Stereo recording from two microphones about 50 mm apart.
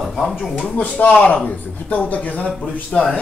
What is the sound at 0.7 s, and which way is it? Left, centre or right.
Speech, left.